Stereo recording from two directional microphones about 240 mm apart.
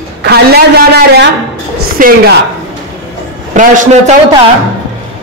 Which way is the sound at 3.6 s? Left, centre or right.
Right.